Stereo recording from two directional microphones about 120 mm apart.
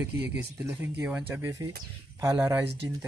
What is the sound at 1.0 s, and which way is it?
Speech, 10° right (ahead or behind).